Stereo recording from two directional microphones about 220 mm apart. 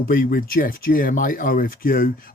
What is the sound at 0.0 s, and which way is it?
A man's voice, 40° left (ahead or behind).